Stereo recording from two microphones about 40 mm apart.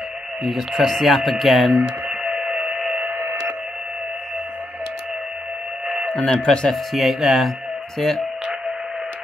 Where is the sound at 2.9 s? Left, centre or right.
Right.